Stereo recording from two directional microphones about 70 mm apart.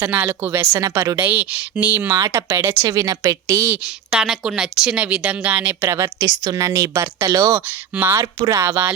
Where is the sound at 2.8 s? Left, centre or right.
Right.